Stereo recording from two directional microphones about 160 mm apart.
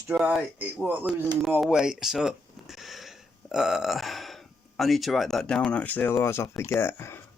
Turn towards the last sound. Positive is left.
turn(degrees=15)  # may be behind; listen again after turning